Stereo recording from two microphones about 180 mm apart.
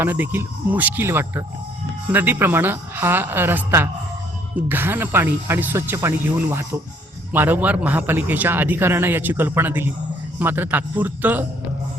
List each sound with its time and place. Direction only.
0.0 s a man's voice: 10° right (ahead or behind)